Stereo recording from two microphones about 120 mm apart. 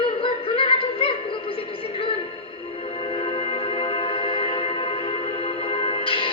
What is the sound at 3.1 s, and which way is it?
Music, 55° left (ahead or behind).